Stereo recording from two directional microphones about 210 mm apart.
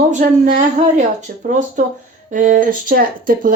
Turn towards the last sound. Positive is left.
turn(degrees=-40)  # may be behind; listen again after turning